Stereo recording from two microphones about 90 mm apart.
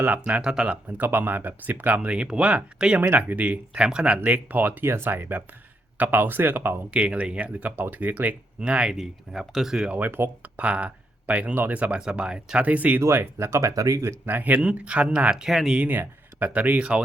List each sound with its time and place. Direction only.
0.0 s speech: 15° right (ahead or behind)
6.9 s speech: 10° right (ahead or behind)
10.0 s speech: 20° right (ahead or behind)
13.0 s speech: 30° right (ahead or behind)
14.3 s speech: 20° right (ahead or behind); by 15.8 s 5° right (ahead or behind)
15.8 s speech: 20° right (ahead or behind)